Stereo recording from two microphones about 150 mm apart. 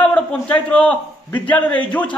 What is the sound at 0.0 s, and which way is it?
A man's voice, 10° left (ahead or behind).